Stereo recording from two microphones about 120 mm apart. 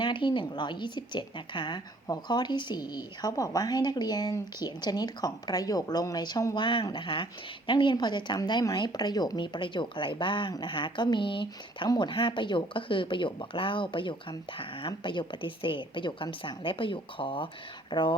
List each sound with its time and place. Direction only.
0.0 s a woman's voice: 40° left (ahead or behind)